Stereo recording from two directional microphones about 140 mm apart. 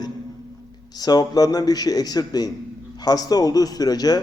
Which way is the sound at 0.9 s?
30° left (ahead or behind).